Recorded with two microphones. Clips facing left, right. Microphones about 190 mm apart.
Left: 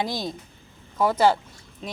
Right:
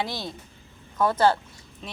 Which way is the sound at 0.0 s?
15° left (ahead or behind).